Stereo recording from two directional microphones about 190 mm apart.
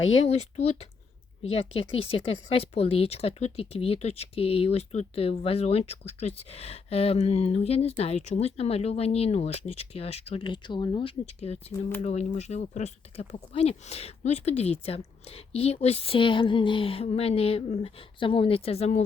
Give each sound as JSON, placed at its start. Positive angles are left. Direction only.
{"t": 0.1, "sound": "speech", "side_deg": 35}